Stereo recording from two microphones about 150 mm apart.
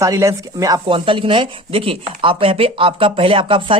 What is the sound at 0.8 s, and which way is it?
Speech, 35° right (ahead or behind).